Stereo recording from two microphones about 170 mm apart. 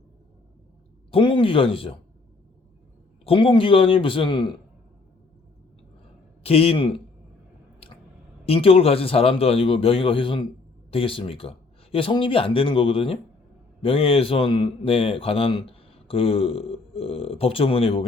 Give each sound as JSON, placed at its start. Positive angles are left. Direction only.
{"t": 1.1, "sound": "a man's voice", "side_deg": 30}
{"t": 3.2, "sound": "a man's voice", "side_deg": 30}
{"t": 6.4, "sound": "a man's voice", "side_deg": 35}
{"t": 8.4, "sound": "a man's voice", "side_deg": 35}